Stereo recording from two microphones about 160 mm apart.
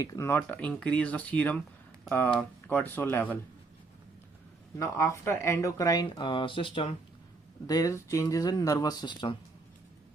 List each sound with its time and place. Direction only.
0.0 s speech: 20° left (ahead or behind)
4.8 s speech: 20° left (ahead or behind)
7.7 s speech: 20° left (ahead or behind)